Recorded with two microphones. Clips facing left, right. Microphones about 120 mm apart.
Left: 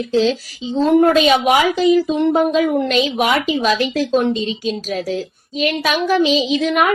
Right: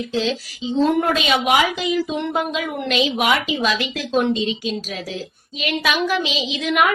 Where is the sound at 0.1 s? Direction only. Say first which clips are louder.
Left 9 dB; 40° left (ahead or behind).